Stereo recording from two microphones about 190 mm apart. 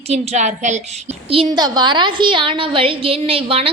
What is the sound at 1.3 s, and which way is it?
A woman's voice, 25° right (ahead or behind).